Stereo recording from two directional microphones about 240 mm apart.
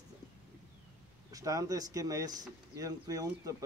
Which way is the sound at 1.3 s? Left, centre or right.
Centre.